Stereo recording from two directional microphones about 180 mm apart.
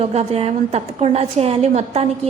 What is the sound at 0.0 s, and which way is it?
A woman's voice, 35° right (ahead or behind).